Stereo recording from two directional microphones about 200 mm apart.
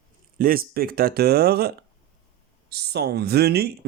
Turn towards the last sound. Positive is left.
turn(degrees=-55)  # may be behind; listen again after turning